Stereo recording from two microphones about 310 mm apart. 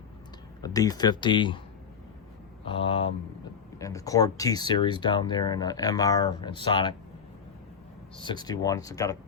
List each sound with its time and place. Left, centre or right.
0.6 s speech: centre
2.6 s a sound: centre
3.8 s speech: centre
8.2 s speech: centre